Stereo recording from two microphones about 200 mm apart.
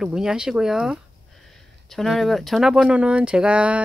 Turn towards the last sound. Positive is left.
turn(degrees=-5)  # may be behind; listen again after turning